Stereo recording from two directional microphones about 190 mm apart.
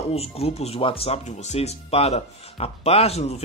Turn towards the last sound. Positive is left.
turn(degrees=35)  # may be behind; listen again after turning